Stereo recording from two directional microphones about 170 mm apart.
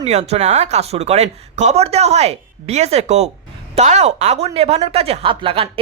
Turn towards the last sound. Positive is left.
turn(degrees=-30)  # may be behind; listen again after turning